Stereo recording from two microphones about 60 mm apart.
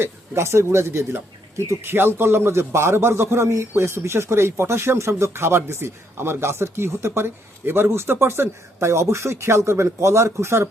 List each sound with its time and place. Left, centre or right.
0.0 s a man's voice: right